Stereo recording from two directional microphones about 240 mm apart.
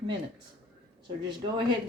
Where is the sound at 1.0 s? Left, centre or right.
Centre.